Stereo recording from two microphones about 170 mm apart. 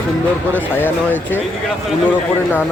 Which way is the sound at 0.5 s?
10° left (ahead or behind).